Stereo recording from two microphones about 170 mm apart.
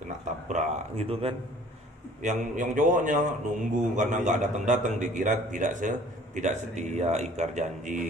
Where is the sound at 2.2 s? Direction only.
50° right (ahead or behind).